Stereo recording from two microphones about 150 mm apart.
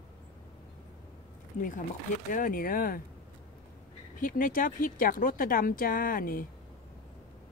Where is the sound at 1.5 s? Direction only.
60° left (ahead or behind).